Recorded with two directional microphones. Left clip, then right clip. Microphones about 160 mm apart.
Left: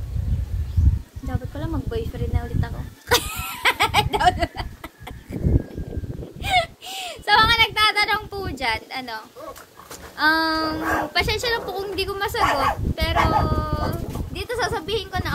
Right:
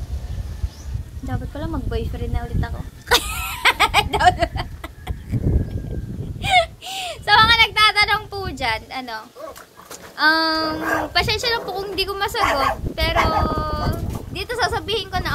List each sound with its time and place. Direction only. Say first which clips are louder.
1.3 s speech: right 2 dB; 10° right (ahead or behind)
6.4 s a sound: right 4 dB; 5° right (ahead or behind)
10.1 s a woman's voice: right 2 dB; centre (ahead or behind)